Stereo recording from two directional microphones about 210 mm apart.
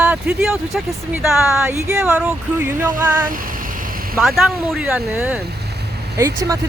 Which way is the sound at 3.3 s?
40° right (ahead or behind).